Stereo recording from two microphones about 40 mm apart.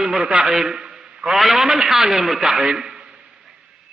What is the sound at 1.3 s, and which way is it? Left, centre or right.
A man's voice, centre.